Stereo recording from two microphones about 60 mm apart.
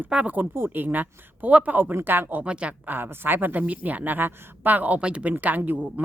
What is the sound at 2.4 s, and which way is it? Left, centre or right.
Speech, centre.